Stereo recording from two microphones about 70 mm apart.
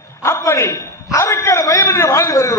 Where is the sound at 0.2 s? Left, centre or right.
Left.